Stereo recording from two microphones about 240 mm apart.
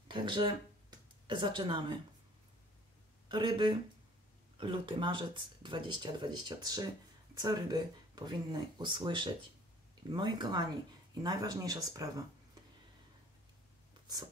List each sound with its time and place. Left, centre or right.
0.1 s speech: centre
3.3 s speech: centre